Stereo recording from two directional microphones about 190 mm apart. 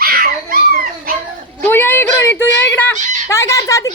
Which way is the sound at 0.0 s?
50° right (ahead or behind).